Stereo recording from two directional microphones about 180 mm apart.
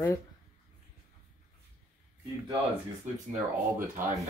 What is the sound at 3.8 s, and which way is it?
Speech, 50° right (ahead or behind).